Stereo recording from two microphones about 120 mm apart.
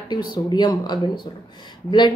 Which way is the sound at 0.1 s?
35° left (ahead or behind).